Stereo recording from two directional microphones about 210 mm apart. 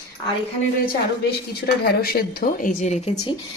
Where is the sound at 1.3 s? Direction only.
50° left (ahead or behind); by 3.3 s 30° left (ahead or behind).